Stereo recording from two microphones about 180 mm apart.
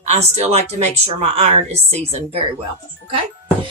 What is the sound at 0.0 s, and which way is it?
A woman's voice, 35° right (ahead or behind).